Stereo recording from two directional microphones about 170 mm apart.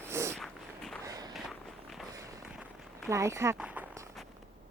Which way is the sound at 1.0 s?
20° right (ahead or behind).